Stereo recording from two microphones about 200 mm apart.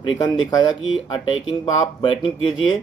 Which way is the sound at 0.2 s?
20° left (ahead or behind).